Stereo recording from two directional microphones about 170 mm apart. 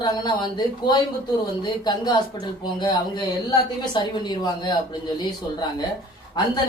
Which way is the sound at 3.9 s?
25° left (ahead or behind).